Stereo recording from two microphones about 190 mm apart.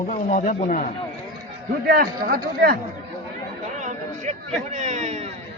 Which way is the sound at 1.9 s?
50° right (ahead or behind).